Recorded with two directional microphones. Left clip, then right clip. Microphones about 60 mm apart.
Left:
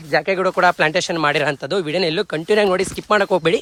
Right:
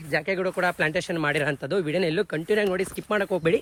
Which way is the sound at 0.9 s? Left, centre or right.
Left.